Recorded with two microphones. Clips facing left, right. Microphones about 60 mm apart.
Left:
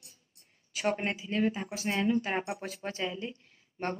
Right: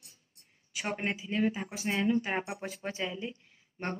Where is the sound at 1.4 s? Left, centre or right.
Centre.